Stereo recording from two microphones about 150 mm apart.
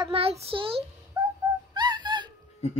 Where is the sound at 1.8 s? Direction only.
30° right (ahead or behind).